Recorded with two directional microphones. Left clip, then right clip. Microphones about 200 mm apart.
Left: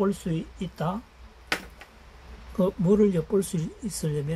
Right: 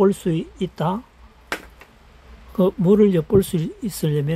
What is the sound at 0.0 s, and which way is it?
Speech, 65° right (ahead or behind).